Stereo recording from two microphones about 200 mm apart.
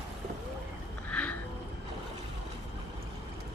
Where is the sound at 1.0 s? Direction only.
5° left (ahead or behind).